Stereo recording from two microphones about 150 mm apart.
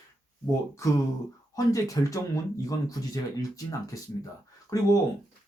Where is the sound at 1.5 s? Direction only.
20° left (ahead or behind).